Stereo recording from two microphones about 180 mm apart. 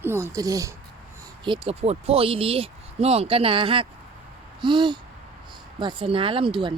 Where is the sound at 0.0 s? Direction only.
15° right (ahead or behind).